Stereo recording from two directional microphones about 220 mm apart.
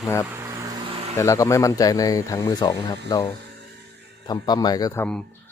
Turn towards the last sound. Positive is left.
turn(degrees=10)  # may be behind; listen again after turning